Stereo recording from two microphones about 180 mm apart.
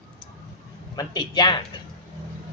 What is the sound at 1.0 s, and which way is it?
Speech, 25° left (ahead or behind).